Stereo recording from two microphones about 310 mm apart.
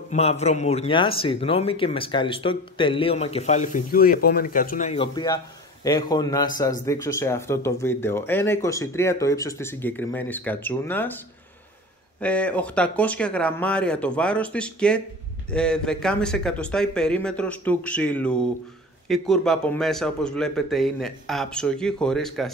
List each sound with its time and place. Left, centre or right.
0.1 s speech: left
12.2 s a man's voice: centre